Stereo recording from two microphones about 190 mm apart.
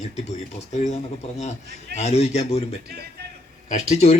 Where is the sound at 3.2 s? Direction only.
60° right (ahead or behind).